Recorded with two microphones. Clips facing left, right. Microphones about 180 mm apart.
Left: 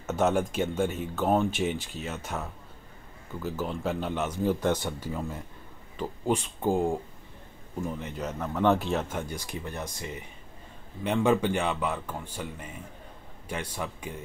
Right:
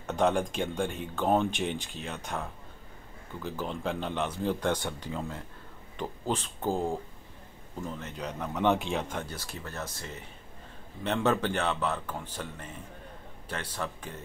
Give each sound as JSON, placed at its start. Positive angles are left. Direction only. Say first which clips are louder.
{"t": 0.0, "sound": "speech", "louder": "left 1 dB", "side_deg": 5}